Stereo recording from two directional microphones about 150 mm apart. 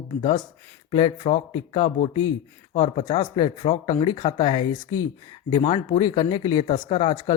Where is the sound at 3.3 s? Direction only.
35° left (ahead or behind).